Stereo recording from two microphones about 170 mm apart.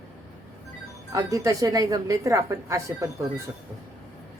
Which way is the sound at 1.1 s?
20° right (ahead or behind).